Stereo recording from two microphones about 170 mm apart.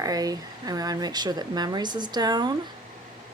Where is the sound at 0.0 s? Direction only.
20° right (ahead or behind).